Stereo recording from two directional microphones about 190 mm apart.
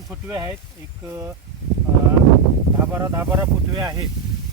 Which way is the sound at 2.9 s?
15° right (ahead or behind).